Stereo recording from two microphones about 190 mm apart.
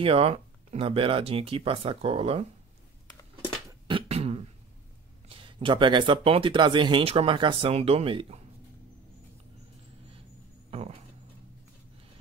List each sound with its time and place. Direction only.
0.0 s speech: 30° right (ahead or behind)
3.8 s beatboxing: 30° right (ahead or behind)
5.4 s speech: 25° right (ahead or behind)
10.7 s a sound: 30° right (ahead or behind)